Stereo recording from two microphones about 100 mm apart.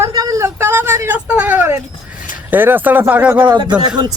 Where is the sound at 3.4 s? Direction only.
50° right (ahead or behind).